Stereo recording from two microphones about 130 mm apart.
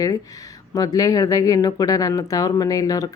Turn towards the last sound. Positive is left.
turn(degrees=25)  # may be behind; listen again after turning